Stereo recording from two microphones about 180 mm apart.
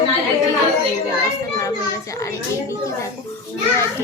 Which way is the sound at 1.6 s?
20° left (ahead or behind).